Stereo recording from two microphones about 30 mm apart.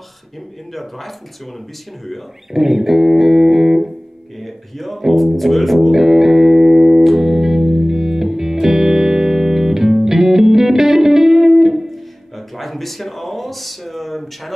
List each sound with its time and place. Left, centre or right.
0.7 s speech: centre
2.5 s music: centre
4.4 s speech: centre
5.9 s music: centre
11.9 s speech: centre